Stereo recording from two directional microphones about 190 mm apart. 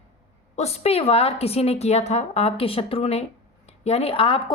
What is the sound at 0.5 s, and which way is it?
Speech, 35° left (ahead or behind).